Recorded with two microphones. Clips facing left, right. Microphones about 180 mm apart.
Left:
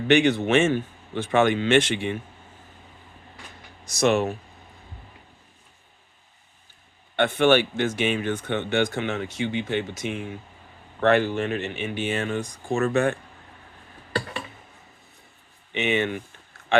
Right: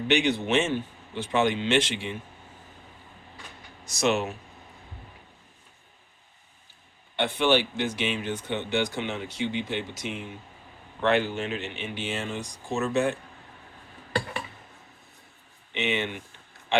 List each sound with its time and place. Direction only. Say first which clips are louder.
0.1 s speech: left 5 dB; 50° left (ahead or behind)
4.0 s speech: left 4 dB; 55° left (ahead or behind)
7.2 s speech: left 4 dB; 50° left (ahead or behind)
15.7 s speech: left 5 dB; 50° left (ahead or behind)